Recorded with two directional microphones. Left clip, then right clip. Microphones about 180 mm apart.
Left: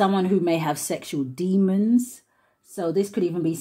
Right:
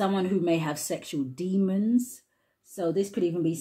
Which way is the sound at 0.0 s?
30° left (ahead or behind).